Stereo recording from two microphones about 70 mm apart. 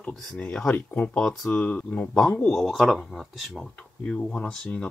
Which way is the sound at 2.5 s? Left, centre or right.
Centre.